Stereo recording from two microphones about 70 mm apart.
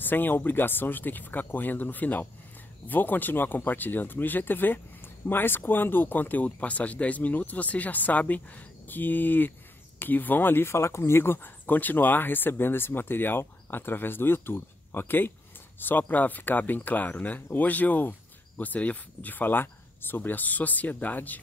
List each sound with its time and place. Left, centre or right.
0.0 s speech: left